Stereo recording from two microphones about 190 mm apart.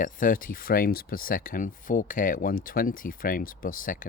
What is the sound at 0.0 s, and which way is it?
Speech, 45° left (ahead or behind).